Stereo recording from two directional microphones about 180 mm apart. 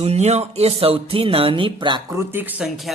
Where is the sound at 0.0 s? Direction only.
35° right (ahead or behind).